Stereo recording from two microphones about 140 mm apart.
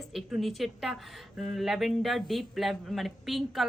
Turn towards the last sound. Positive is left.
turn(degrees=0)  # may be behind; listen again after turning